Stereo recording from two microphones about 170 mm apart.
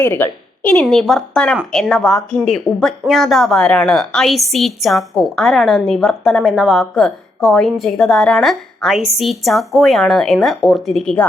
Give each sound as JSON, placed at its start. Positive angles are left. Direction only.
{"t": 0.0, "sound": "a woman's voice", "side_deg": 10}